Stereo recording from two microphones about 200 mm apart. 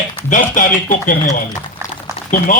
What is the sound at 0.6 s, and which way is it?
A man's voice, 40° left (ahead or behind).